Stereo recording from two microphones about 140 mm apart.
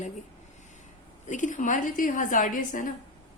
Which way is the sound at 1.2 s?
60° left (ahead or behind).